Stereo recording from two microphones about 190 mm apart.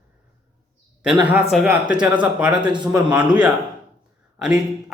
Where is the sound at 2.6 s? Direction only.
25° right (ahead or behind).